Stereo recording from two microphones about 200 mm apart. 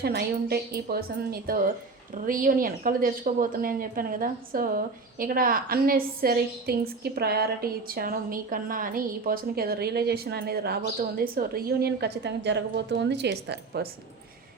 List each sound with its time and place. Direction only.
0.0 s a woman's voice: 55° right (ahead or behind)